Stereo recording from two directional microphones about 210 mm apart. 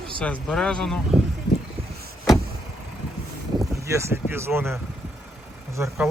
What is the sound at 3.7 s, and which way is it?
Speech, 15° right (ahead or behind).